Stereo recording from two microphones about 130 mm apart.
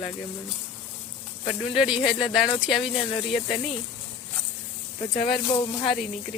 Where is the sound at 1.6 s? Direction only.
5° right (ahead or behind).